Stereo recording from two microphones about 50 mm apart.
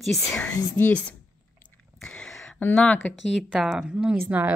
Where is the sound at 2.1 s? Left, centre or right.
Left.